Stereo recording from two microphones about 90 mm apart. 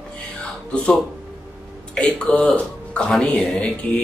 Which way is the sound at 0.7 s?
10° left (ahead or behind).